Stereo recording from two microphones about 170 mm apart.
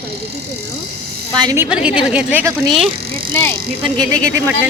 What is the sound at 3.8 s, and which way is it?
Speech, 20° right (ahead or behind).